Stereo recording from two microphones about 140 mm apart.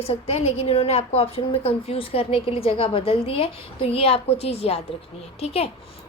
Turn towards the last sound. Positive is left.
turn(degrees=45)  # may be behind; listen again after turning